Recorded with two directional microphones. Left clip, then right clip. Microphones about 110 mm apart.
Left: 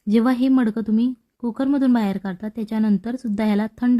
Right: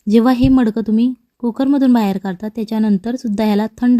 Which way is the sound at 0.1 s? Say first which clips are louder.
Right 6 dB; 40° right (ahead or behind).